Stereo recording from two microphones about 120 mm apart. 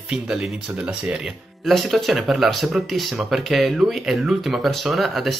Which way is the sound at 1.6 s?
Centre (ahead or behind).